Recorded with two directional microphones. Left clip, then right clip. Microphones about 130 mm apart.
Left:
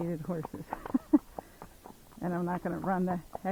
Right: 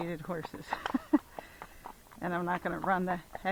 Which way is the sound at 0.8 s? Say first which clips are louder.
Left 3 dB; 35° right (ahead or behind).